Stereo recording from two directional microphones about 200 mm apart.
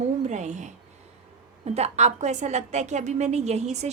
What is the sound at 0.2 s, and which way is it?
A woman's voice, 35° right (ahead or behind).